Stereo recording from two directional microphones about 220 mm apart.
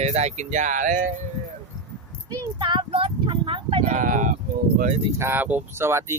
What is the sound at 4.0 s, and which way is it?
Speech, 35° right (ahead or behind).